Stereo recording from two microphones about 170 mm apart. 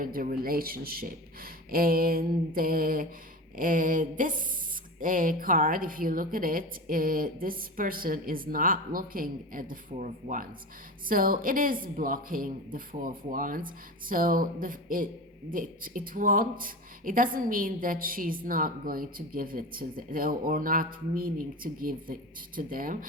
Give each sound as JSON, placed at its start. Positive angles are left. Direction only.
{"t": 0.0, "sound": "a man's voice", "side_deg": -55}
{"t": 3.6, "sound": "a sound", "side_deg": -55}
{"t": 4.9, "sound": "a man's voice", "side_deg": -55}